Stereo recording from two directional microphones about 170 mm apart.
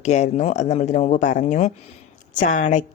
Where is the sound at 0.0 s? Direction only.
45° left (ahead or behind).